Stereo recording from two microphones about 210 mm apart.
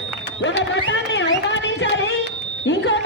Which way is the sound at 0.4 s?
60° left (ahead or behind).